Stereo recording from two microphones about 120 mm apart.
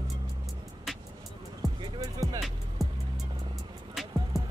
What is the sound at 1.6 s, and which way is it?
Music, centre (ahead or behind).